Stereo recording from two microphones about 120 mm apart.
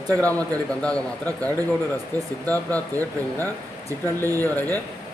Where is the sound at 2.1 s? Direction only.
15° left (ahead or behind).